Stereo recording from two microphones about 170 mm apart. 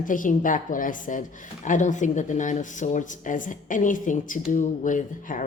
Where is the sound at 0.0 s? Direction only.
50° left (ahead or behind).